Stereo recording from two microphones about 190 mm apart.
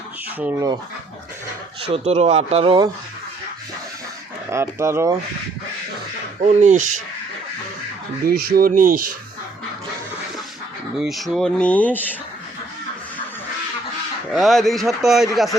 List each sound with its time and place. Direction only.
0.3 s speech: 10° right (ahead or behind)
1.9 s speech: 35° right (ahead or behind)
4.4 s speech: 15° right (ahead or behind)
6.4 s speech: 40° right (ahead or behind)
8.3 s speech: 55° right (ahead or behind)
10.9 s speech: centre (ahead or behind)
14.3 s speech: centre (ahead or behind)